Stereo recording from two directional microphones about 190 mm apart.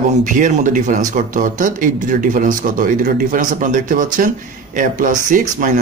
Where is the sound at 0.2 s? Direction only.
40° right (ahead or behind).